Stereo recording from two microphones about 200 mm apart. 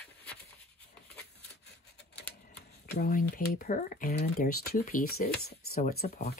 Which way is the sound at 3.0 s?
45° left (ahead or behind).